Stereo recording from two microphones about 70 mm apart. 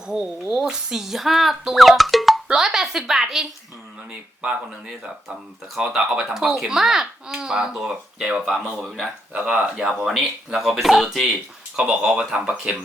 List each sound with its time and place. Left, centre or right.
0.1 s a woman's voice: centre
5.7 s speech: centre